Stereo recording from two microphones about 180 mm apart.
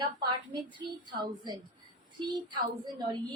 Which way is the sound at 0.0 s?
25° right (ahead or behind).